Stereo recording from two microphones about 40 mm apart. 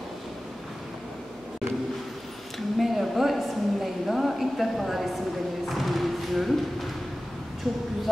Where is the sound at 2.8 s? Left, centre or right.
Centre.